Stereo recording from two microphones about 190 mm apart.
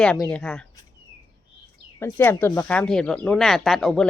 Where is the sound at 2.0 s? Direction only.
10° left (ahead or behind).